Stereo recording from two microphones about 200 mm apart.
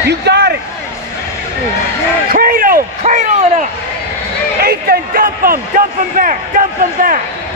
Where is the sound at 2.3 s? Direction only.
45° right (ahead or behind).